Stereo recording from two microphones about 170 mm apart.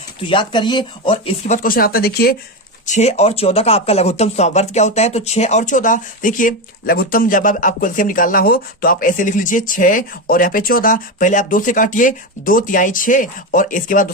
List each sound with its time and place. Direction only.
0.2 s speech: 30° left (ahead or behind); by 2.3 s 65° left (ahead or behind)
2.8 s speech: 45° left (ahead or behind)